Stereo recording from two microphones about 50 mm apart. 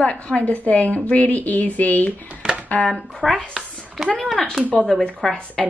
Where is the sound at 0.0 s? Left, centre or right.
Left.